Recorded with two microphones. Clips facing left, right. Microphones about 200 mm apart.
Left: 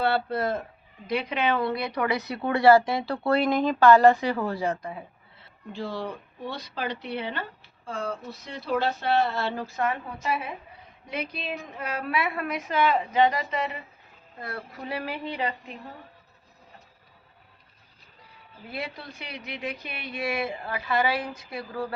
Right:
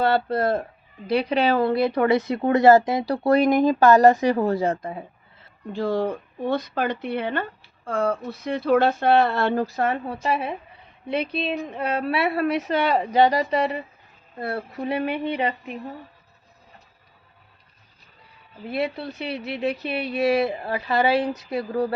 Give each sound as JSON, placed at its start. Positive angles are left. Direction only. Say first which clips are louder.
{"t": 0.1, "sound": "speech", "louder": "right 5 dB", "side_deg": -40}
{"t": 2.4, "sound": "speech", "louder": "right 2 dB", "side_deg": -45}
{"t": 3.5, "sound": "speech", "louder": "right 6 dB", "side_deg": -15}
{"t": 3.8, "sound": "speech", "louder": "even", "side_deg": -40}
{"t": 5.7, "sound": "speech", "louder": "right 9 dB", "side_deg": -50}
{"t": 9.6, "sound": "a woman's voice", "louder": "right 4 dB", "side_deg": -35}
{"t": 18.7, "sound": "a woman's voice", "louder": "right 10 dB", "side_deg": -30}